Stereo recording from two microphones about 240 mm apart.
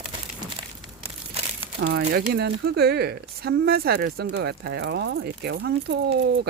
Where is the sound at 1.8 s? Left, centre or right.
Right.